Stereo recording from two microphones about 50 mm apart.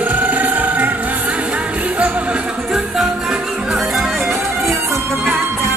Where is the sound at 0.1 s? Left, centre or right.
Right.